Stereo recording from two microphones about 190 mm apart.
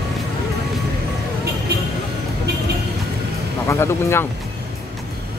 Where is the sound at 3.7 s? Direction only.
15° left (ahead or behind).